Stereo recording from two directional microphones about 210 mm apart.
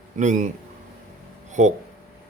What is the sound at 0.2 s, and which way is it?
Speech, 35° right (ahead or behind).